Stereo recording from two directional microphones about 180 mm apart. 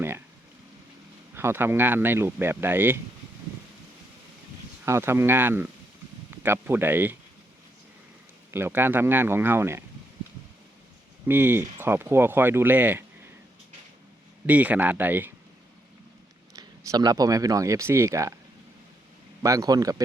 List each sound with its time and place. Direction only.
1.4 s speech: 15° right (ahead or behind)
4.9 s speech: 15° right (ahead or behind)
8.4 s speech: 15° right (ahead or behind)
11.3 s speech: 10° right (ahead or behind)
14.4 s speech: 10° right (ahead or behind)
16.6 s speech: 20° right (ahead or behind)
19.4 s a man's voice: 20° right (ahead or behind)